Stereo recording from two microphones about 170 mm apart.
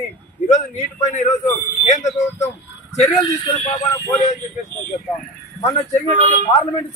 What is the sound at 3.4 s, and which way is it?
Speech, 30° left (ahead or behind).